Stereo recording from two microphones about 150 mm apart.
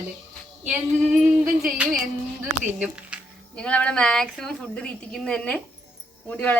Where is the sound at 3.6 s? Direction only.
10° left (ahead or behind).